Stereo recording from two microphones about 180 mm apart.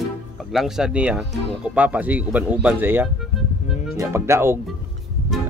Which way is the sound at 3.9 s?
15° right (ahead or behind).